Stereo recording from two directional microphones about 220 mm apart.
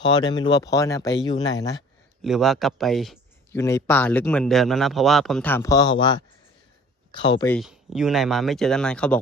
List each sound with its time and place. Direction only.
0.0 s speech: 20° left (ahead or behind)
2.2 s speech: centre (ahead or behind)
3.5 s speech: 15° left (ahead or behind)
7.5 s speech: centre (ahead or behind)